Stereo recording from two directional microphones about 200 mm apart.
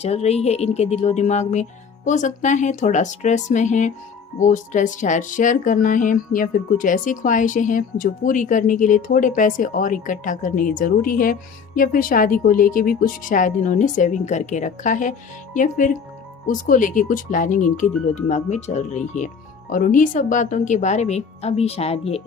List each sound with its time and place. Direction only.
0.0 s speech: 30° left (ahead or behind)